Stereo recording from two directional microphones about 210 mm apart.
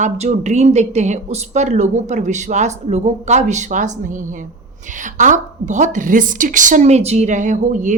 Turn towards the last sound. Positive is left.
turn(degrees=-35)  # may be behind; listen again after turning